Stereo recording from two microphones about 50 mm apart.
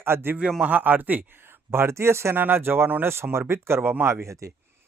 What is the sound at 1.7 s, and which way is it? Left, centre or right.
Speech, right.